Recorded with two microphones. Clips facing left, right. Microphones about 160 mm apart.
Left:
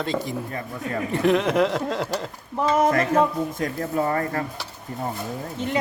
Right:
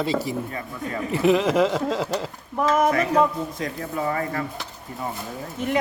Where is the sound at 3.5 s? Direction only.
50° left (ahead or behind).